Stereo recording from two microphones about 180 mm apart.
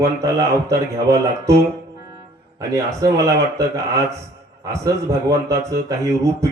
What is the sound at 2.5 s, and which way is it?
A man's voice, 15° right (ahead or behind).